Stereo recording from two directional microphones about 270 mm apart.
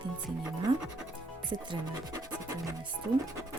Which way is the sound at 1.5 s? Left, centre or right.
Centre.